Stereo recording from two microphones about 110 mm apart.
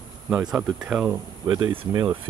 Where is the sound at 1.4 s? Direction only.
45° right (ahead or behind).